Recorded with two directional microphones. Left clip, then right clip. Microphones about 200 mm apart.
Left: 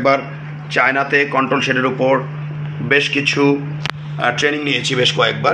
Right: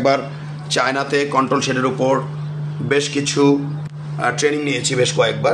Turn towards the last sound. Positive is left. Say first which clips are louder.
# left 2 dB
turn(degrees=-5)  # may be behind; listen again after turning